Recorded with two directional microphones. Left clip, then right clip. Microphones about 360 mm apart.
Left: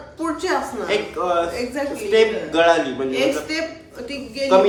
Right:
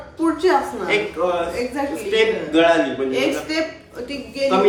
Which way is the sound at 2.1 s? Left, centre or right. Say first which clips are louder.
Left 1 dB; centre.